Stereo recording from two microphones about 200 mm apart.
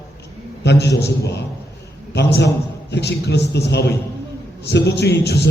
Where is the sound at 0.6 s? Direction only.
60° left (ahead or behind).